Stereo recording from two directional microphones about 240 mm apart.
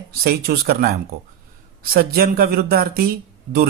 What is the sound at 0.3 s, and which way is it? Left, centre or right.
Speech, right.